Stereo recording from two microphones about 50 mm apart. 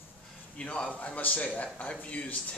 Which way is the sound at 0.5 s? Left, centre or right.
Left.